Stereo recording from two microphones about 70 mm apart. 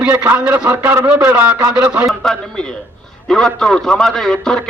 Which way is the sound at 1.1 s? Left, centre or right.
Centre.